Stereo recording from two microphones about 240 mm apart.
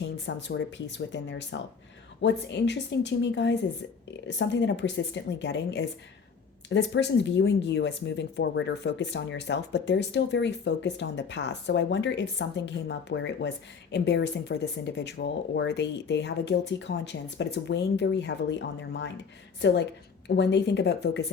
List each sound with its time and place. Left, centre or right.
0.0 s speech: left